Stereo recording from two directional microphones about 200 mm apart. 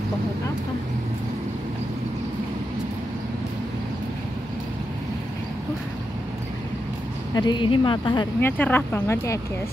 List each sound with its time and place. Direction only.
7.3 s a woman's voice: 20° left (ahead or behind)
8.4 s speech: 10° left (ahead or behind)